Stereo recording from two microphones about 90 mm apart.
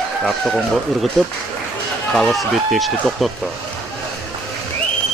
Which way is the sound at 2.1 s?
5° left (ahead or behind).